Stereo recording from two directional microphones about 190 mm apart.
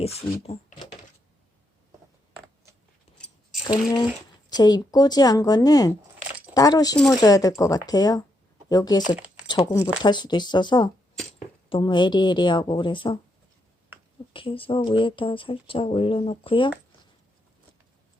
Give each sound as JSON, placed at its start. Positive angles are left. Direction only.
{"t": 0.4, "sound": "speech", "side_deg": 35}
{"t": 3.2, "sound": "a sound", "side_deg": 0}
{"t": 4.4, "sound": "speech", "side_deg": 20}
{"t": 14.3, "sound": "speech", "side_deg": 30}